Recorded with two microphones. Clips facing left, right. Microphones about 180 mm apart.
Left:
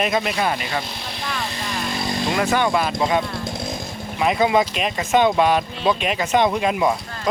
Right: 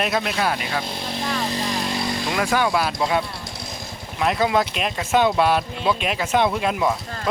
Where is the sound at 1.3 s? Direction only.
30° right (ahead or behind).